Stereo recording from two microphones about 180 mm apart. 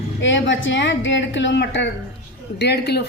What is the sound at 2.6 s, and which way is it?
Speech, 65° left (ahead or behind).